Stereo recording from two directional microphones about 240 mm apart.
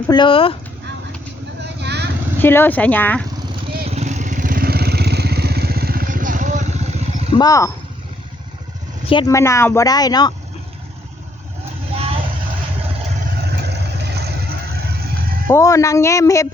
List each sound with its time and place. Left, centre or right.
0.1 s speech: centre
1.6 s vehicle: right
2.4 s speech: centre
3.8 s vehicle: right
7.3 s speech: centre
9.0 s speech: centre
15.4 s speech: centre